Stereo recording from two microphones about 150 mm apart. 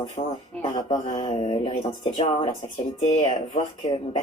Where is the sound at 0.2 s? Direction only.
50° left (ahead or behind).